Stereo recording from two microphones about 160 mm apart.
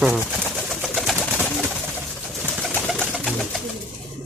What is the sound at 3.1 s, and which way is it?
Bird, centre (ahead or behind).